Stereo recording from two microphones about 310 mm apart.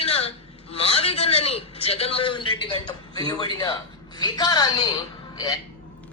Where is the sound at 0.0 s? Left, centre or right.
Centre.